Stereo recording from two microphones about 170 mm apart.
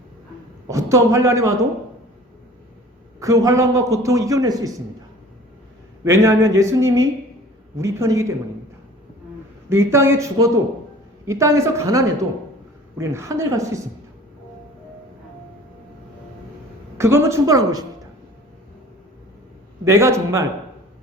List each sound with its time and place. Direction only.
0.7 s speech: 20° right (ahead or behind)
3.2 s a man's voice: 20° right (ahead or behind)
6.1 s speech: 15° right (ahead or behind)
9.6 s speech: 15° right (ahead or behind)
17.0 s a man's voice: 15° right (ahead or behind)
19.8 s speech: 15° right (ahead or behind)